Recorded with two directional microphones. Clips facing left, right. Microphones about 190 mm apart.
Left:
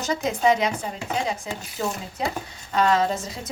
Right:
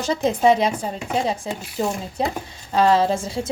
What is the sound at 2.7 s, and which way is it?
Speech, 30° right (ahead or behind).